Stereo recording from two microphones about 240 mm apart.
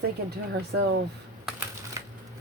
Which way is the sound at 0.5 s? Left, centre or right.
Right.